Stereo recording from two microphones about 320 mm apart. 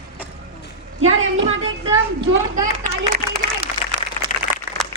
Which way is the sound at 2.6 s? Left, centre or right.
Right.